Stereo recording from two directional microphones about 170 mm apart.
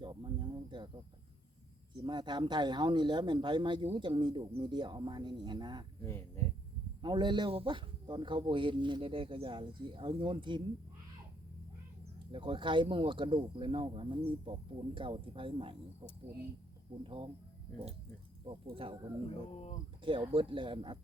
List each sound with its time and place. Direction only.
0.0 s a sound: 25° right (ahead or behind)
2.0 s speech: 25° right (ahead or behind)
6.0 s speech: 15° left (ahead or behind)
7.0 s speech: 25° right (ahead or behind)
12.3 s speech: 30° right (ahead or behind)
17.0 s speech: 30° right (ahead or behind)
18.4 s speech: 30° right (ahead or behind)